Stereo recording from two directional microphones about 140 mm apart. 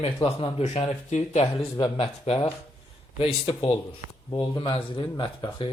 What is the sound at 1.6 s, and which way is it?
Speech, 30° left (ahead or behind).